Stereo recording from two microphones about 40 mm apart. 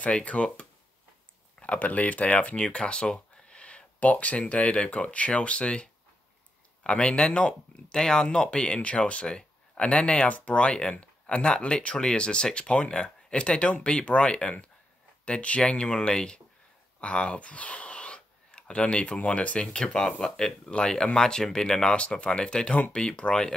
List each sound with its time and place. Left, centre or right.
0.2 s speech: left
19.6 s speech: left